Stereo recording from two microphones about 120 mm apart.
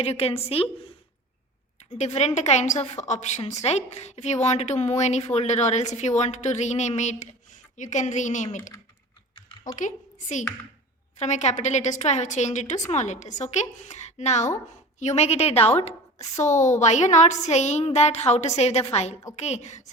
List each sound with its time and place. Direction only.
0.0 s a woman's voice: 60° left (ahead or behind)
2.0 s a woman's voice: 65° left (ahead or behind)
7.8 s a woman's voice: 90° left
9.3 s typing: 50° left (ahead or behind)
9.7 s a woman's voice: 85° left
11.2 s a woman's voice: 75° left (ahead or behind)
16.4 s a woman's voice: 90° left; by 19.9 s 70° left (ahead or behind)